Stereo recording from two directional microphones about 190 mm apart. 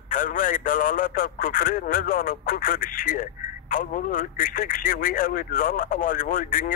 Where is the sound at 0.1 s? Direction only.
45° left (ahead or behind).